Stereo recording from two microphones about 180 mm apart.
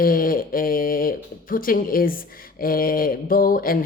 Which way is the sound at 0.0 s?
55° left (ahead or behind).